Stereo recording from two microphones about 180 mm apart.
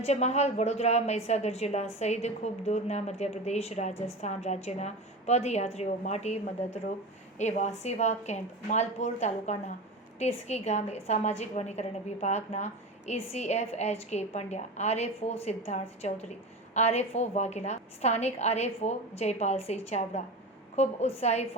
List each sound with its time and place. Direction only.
0.0 s a woman's voice: 40° left (ahead or behind)